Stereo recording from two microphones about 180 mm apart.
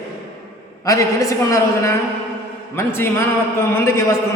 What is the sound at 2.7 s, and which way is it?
Speech, 10° left (ahead or behind).